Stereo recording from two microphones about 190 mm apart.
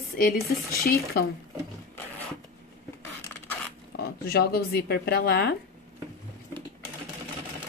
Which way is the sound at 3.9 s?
55° left (ahead or behind).